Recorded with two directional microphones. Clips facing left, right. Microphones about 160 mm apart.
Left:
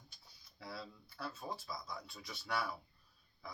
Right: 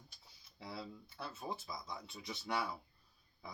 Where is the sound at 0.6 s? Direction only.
20° right (ahead or behind).